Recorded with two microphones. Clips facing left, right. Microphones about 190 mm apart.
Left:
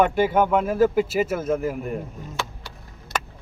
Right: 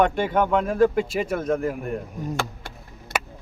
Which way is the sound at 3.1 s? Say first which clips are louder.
Right 1 dB; 55° right (ahead or behind).